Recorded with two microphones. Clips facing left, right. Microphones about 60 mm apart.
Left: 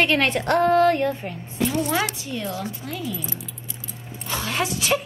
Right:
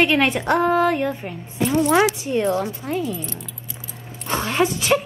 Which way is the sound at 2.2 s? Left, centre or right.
Right.